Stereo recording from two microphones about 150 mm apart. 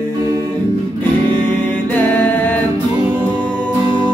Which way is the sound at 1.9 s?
10° left (ahead or behind).